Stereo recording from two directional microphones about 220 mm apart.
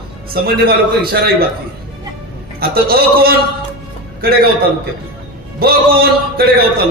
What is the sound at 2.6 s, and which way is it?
Speech, 45° right (ahead or behind).